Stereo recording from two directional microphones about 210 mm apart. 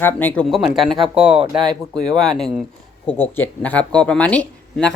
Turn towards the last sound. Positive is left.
turn(degrees=5)  # may be behind; listen again after turning